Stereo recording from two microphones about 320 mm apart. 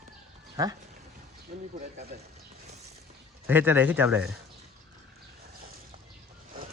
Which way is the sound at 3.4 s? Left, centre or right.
Centre.